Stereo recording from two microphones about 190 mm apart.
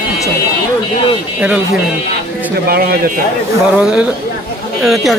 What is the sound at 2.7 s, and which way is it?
Speech, 55° right (ahead or behind).